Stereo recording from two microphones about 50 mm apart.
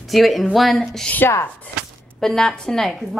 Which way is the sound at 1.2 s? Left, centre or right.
Left.